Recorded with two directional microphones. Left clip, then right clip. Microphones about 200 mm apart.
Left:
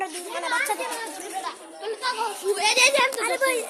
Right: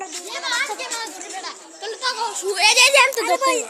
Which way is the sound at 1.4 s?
25° right (ahead or behind).